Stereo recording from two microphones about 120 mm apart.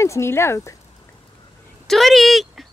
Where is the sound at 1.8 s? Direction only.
Centre (ahead or behind).